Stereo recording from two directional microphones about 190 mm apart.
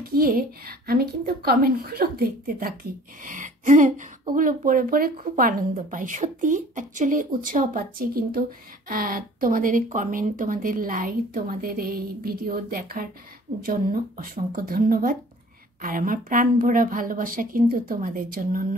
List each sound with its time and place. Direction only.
0.0 s a woman's voice: 50° right (ahead or behind)